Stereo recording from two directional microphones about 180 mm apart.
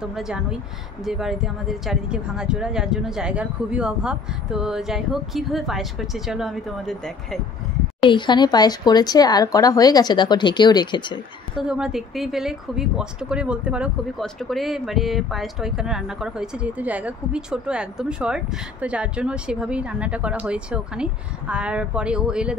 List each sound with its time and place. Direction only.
0.0 s speech: 5° right (ahead or behind)
8.0 s speech: 25° left (ahead or behind)
11.5 s speech: 5° right (ahead or behind)